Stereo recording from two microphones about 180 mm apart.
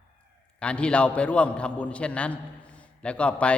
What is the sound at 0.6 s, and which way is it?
A man's voice, 5° left (ahead or behind).